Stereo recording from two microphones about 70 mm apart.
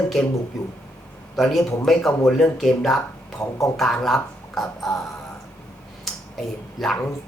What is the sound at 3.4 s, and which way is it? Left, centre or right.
Speech, left.